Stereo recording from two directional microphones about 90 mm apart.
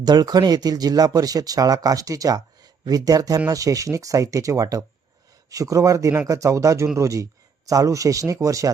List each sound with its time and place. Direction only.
0.0 s speech: 50° right (ahead or behind)